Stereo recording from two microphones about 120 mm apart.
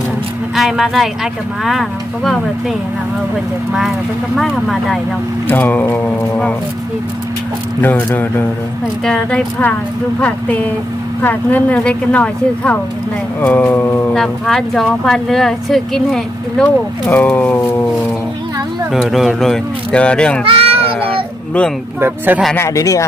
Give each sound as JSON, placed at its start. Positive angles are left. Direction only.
{"t": 0.5, "sound": "speech", "side_deg": 0}
{"t": 5.5, "sound": "speech", "side_deg": 15}
{"t": 7.8, "sound": "speech", "side_deg": 15}
{"t": 14.1, "sound": "speech", "side_deg": 5}
{"t": 16.6, "sound": "speech", "side_deg": 15}
{"t": 18.9, "sound": "speech", "side_deg": 0}
{"t": 20.4, "sound": "a sound", "side_deg": -50}
{"t": 22.5, "sound": "speech", "side_deg": 25}